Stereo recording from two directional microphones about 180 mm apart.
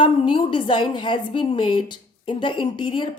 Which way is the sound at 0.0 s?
25° left (ahead or behind).